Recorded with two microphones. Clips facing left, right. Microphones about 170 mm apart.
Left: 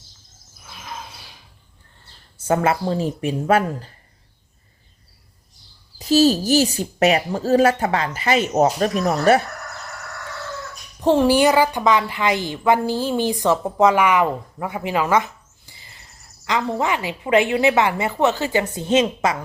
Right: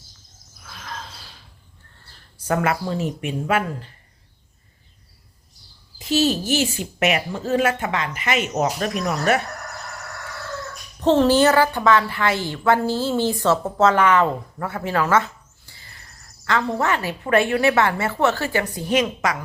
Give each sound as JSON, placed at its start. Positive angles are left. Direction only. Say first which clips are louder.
{"t": 0.6, "sound": "a sound", "louder": "left 1 dB", "side_deg": 15}
{"t": 2.0, "sound": "speech", "louder": "left 4 dB", "side_deg": 25}
{"t": 6.0, "sound": "speech", "louder": "left 5 dB", "side_deg": 40}
{"t": 11.0, "sound": "a woman's voice", "louder": "even", "side_deg": 10}